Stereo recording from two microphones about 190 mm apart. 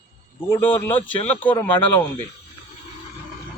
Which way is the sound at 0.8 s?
10° left (ahead or behind).